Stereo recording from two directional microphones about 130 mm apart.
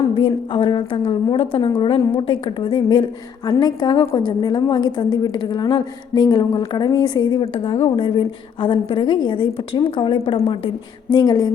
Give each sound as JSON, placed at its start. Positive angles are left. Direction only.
{"t": 0.1, "sound": "a woman's voice", "side_deg": 40}
{"t": 11.1, "sound": "a woman's voice", "side_deg": 30}